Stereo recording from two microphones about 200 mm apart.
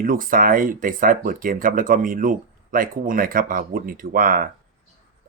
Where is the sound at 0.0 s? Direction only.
45° right (ahead or behind).